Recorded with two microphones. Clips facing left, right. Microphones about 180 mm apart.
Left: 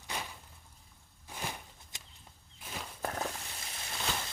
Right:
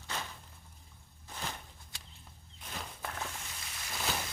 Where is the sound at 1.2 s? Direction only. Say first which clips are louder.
Left 1 dB; 10° left (ahead or behind).